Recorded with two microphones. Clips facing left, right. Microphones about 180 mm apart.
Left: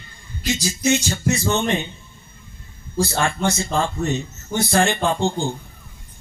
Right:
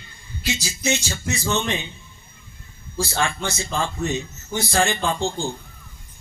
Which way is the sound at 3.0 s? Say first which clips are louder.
Left 2 dB; 50° left (ahead or behind).